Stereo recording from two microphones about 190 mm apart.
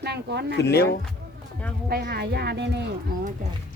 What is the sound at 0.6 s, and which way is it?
Speech, 60° left (ahead or behind).